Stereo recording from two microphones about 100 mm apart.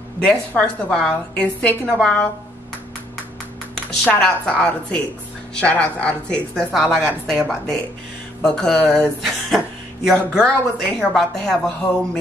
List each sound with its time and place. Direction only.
0.2 s a woman's voice: 10° left (ahead or behind)
4.0 s a woman's voice: 5° left (ahead or behind)